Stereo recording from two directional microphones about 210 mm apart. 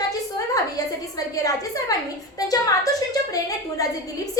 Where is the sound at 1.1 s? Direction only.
15° left (ahead or behind).